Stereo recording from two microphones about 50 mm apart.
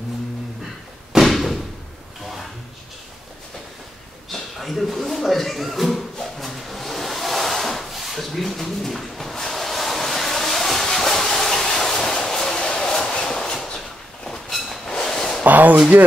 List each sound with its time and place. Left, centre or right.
1.2 s slam: centre
4.3 s a sound: centre
15.4 s speech: right